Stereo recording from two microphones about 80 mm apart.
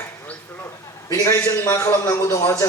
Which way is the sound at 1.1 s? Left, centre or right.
Left.